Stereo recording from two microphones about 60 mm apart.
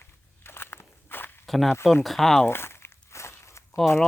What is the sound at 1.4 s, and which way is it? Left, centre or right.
Speech, centre.